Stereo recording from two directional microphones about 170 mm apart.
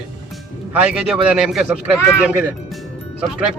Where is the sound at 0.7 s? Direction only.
5° right (ahead or behind).